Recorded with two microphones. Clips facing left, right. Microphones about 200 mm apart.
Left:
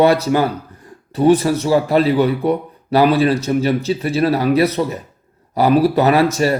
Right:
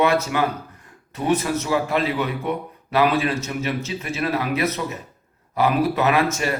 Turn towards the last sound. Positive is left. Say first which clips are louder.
# left 6 dB
turn(degrees=35)  # may be behind; listen again after turning